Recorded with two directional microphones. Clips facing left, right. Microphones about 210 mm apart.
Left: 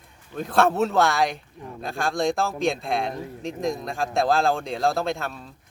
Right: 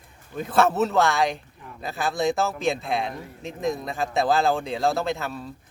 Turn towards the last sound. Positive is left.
turn(degrees=0)  # may be behind; listen again after turning